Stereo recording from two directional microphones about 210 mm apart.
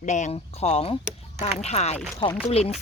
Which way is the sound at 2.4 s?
30° left (ahead or behind).